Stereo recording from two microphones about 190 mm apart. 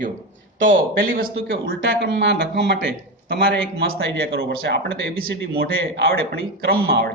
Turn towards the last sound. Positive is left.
turn(degrees=-55)  # may be behind; listen again after turning